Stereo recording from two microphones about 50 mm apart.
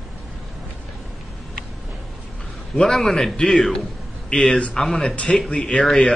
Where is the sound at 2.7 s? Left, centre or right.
Centre.